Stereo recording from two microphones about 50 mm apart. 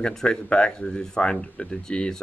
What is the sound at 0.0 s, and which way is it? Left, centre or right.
Speech, centre.